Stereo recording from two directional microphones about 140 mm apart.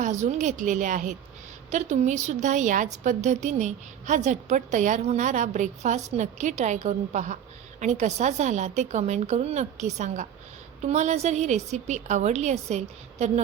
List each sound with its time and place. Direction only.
0.0 s a woman's voice: 60° right (ahead or behind)